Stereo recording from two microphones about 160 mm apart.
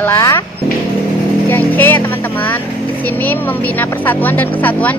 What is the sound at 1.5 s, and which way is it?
Speech, 10° left (ahead or behind).